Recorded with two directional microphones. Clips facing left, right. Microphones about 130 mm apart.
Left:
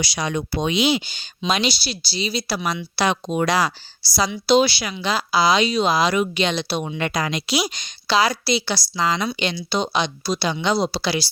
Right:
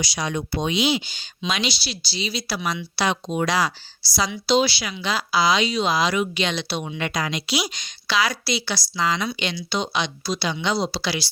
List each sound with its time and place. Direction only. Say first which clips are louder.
0.0 s speech: left 2 dB; 65° left (ahead or behind); by 4.9 s 50° left (ahead or behind)
4.9 s a woman's voice: left 2 dB; 35° left (ahead or behind)